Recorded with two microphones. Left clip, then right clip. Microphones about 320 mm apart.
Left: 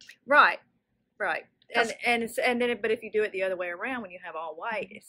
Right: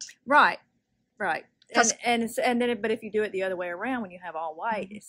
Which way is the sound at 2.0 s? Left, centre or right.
Right.